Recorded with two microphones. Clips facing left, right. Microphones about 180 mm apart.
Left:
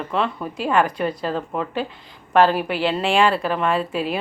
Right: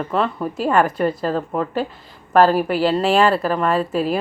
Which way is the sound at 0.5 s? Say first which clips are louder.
Right 2 dB; 45° right (ahead or behind).